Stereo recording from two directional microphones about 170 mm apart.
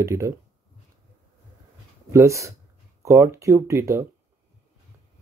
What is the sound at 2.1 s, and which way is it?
Speech, 15° right (ahead or behind).